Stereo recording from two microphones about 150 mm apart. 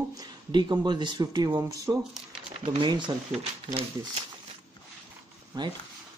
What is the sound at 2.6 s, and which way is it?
Speech, 35° right (ahead or behind).